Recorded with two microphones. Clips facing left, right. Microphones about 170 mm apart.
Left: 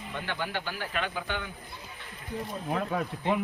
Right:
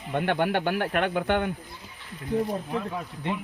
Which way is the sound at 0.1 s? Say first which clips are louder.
Right 10 dB; 60° right (ahead or behind).